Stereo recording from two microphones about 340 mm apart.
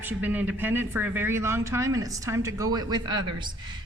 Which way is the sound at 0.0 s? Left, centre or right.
Centre.